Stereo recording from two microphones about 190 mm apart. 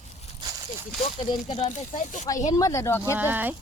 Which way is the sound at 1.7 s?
40° left (ahead or behind).